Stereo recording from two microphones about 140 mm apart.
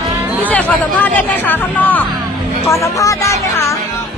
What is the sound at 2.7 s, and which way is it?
Speech, 25° left (ahead or behind).